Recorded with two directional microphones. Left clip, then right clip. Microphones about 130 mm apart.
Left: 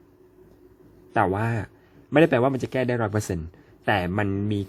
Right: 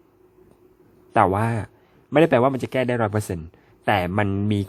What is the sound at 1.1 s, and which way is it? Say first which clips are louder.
A man's voice: right 4 dB; 30° right (ahead or behind).